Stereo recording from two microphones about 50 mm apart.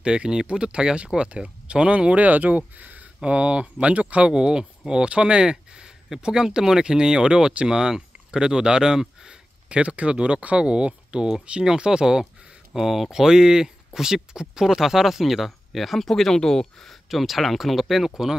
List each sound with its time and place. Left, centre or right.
0.0 s speech: centre
4.3 s speech: centre